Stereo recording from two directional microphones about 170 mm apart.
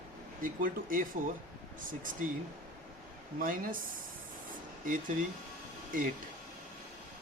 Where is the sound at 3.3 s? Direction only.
55° right (ahead or behind).